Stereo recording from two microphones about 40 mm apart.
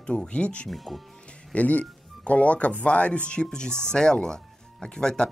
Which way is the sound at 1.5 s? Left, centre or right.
Left.